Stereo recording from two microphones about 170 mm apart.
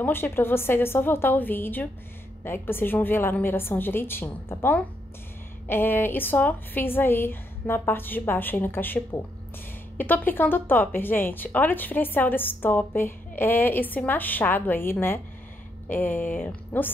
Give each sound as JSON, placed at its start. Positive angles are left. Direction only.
{"t": 0.0, "sound": "speech", "side_deg": 10}